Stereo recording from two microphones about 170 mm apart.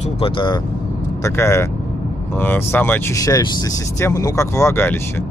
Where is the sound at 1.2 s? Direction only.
15° left (ahead or behind).